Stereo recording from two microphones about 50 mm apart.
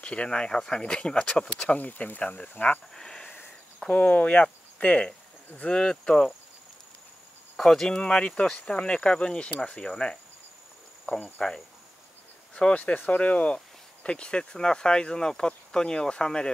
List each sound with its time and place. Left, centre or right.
0.0 s speech: left
1.8 s speech: left
2.9 s speech: centre
3.8 s speech: left
5.7 s speech: centre
7.5 s speech: centre
11.3 s speech: centre